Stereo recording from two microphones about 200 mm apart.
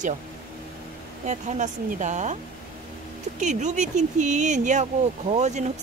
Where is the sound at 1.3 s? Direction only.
35° right (ahead or behind).